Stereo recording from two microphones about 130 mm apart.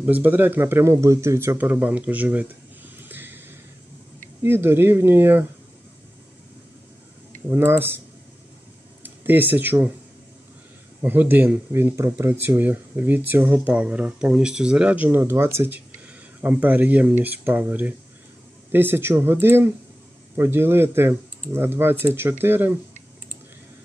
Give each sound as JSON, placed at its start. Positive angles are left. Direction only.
{"t": 0.0, "sound": "speech", "side_deg": -15}
{"t": 3.0, "sound": "a sound", "side_deg": -15}
{"t": 4.4, "sound": "speech", "side_deg": -15}
{"t": 7.4, "sound": "speech", "side_deg": -15}
{"t": 9.0, "sound": "speech", "side_deg": -15}
{"t": 11.0, "sound": "speech", "side_deg": -15}